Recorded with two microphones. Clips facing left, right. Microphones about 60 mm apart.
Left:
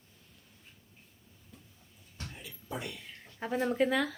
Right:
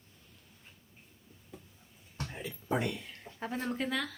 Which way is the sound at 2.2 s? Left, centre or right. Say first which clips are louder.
Right 5 dB; right.